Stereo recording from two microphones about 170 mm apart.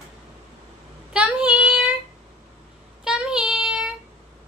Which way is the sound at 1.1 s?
5° right (ahead or behind).